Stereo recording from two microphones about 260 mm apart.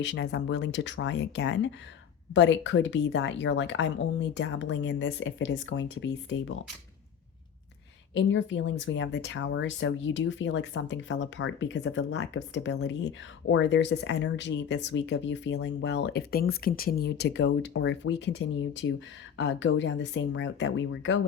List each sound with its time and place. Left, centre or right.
0.0 s speech: left
8.1 s speech: left